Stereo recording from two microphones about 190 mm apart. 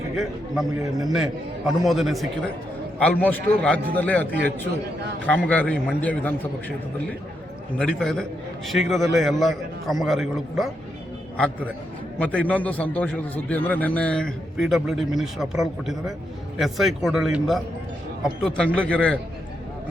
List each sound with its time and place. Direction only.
0.2 s a man's voice: centre (ahead or behind)
0.8 s a man's voice: 20° right (ahead or behind)
1.1 s a man's voice: centre (ahead or behind)
7.8 s a man's voice: 5° left (ahead or behind)